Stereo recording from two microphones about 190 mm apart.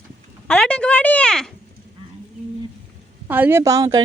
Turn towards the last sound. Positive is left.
turn(degrees=-20)  # may be behind; listen again after turning